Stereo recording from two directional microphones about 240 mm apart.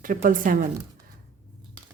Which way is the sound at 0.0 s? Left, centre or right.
Right.